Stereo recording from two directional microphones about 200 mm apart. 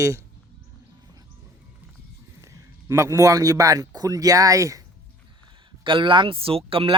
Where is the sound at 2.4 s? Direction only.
15° right (ahead or behind).